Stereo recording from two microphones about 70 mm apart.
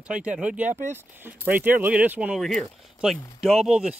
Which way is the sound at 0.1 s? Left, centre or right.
Centre.